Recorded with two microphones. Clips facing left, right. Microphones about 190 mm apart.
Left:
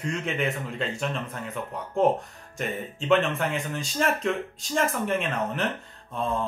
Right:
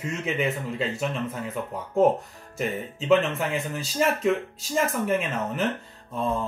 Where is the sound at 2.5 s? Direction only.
Centre (ahead or behind).